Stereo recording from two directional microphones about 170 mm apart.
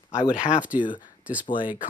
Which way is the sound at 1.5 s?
30° left (ahead or behind).